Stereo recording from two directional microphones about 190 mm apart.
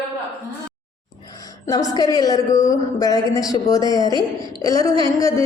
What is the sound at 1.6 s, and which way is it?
A woman's voice, 20° left (ahead or behind).